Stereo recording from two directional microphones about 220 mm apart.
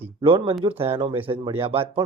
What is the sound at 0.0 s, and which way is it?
Speech, 25° right (ahead or behind).